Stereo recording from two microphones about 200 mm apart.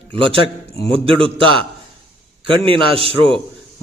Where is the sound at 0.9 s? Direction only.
25° right (ahead or behind).